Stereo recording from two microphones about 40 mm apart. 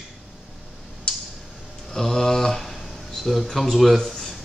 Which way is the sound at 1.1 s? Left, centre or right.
Left.